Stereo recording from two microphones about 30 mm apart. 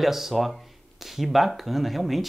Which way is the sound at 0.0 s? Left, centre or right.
Centre.